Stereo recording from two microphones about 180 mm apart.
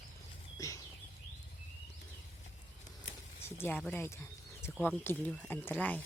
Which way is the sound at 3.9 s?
15° left (ahead or behind).